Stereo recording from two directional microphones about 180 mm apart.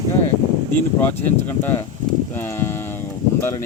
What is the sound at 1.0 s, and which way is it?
Speech, 10° left (ahead or behind).